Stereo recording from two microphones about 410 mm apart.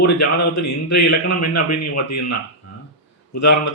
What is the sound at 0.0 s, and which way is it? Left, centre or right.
Speech, left.